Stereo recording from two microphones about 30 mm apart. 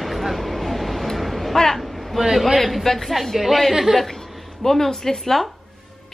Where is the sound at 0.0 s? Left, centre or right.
Centre.